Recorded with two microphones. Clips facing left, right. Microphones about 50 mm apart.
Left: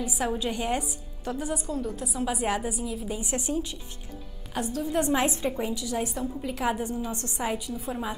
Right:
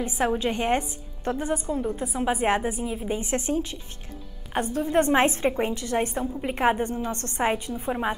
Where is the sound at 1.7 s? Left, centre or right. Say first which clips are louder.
Right 4 dB; right.